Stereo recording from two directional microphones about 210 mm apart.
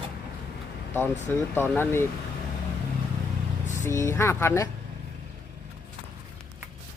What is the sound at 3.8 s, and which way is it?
Speech, 15° left (ahead or behind).